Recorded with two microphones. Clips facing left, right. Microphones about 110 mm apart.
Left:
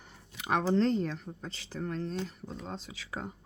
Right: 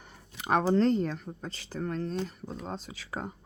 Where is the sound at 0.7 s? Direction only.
45° right (ahead or behind).